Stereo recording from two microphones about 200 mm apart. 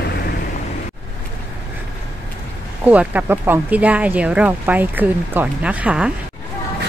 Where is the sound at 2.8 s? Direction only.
10° right (ahead or behind).